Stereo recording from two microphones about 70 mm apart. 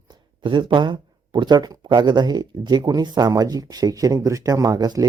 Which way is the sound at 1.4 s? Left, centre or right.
Right.